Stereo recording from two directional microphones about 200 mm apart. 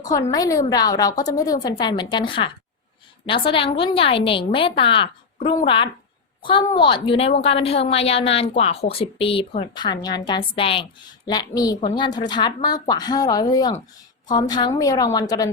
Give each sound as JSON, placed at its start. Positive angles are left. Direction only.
{"t": 0.0, "sound": "a woman's voice", "side_deg": 15}